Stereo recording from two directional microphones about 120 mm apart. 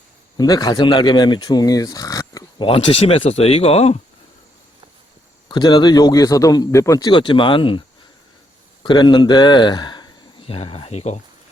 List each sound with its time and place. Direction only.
0.3 s speech: 35° left (ahead or behind)
2.6 s speech: 50° left (ahead or behind)
5.5 s a man's voice: 35° left (ahead or behind)
7.1 s speech: 45° left (ahead or behind)
8.8 s speech: 40° left (ahead or behind); by 11.2 s 60° left (ahead or behind)